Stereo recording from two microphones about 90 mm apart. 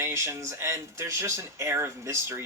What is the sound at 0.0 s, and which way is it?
Speech, 30° right (ahead or behind).